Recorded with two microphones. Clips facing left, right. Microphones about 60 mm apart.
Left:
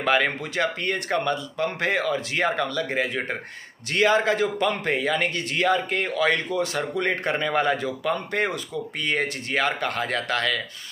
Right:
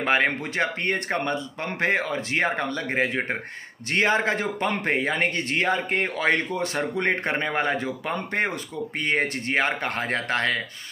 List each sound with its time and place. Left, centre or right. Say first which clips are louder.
0.0 s a man's voice: even; right